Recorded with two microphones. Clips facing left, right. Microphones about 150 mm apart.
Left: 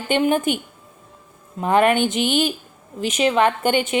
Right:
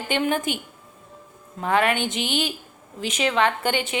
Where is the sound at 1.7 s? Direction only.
50° left (ahead or behind).